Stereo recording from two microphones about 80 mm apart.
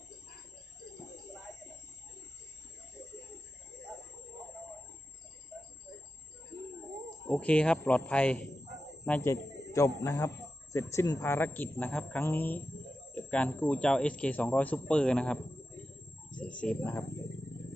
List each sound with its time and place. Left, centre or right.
7.3 s speech: centre
9.2 s a man's voice: left
10.0 s a man's voice: left
10.2 s a sound: left
11.2 s a man's voice: left
13.1 s cricket: centre
13.5 s speech: left
16.3 s a sound: centre